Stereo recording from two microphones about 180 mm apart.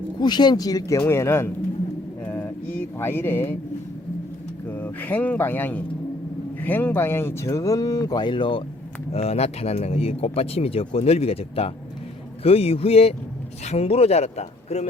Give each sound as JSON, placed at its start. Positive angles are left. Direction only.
{"t": 0.2, "sound": "speech", "side_deg": 25}
{"t": 2.2, "sound": "a sound", "side_deg": 10}
{"t": 4.7, "sound": "speech", "side_deg": 10}